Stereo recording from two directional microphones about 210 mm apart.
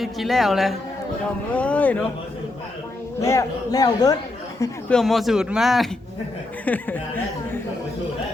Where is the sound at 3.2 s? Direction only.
15° left (ahead or behind).